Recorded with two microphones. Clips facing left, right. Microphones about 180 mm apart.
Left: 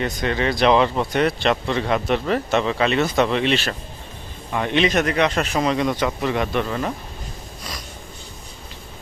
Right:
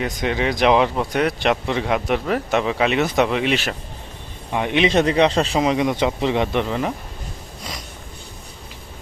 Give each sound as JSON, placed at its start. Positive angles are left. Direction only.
{"t": 0.0, "sound": "speech", "side_deg": -15}
{"t": 4.9, "sound": "speech", "side_deg": -30}
{"t": 5.5, "sound": "speech", "side_deg": -15}